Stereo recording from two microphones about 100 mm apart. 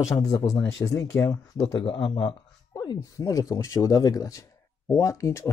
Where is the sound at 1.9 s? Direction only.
65° left (ahead or behind).